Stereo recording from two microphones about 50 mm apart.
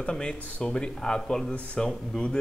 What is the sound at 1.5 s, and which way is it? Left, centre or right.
Speech, left.